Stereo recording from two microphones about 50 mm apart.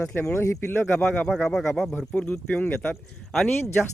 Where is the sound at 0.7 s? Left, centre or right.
Left.